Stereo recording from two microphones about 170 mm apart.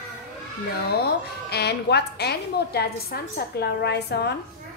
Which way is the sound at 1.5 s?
75° left (ahead or behind).